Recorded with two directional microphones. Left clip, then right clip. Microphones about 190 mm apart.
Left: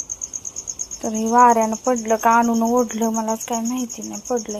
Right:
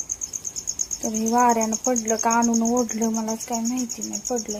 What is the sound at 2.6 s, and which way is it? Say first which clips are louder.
Cricket: left 4 dB; 20° left (ahead or behind).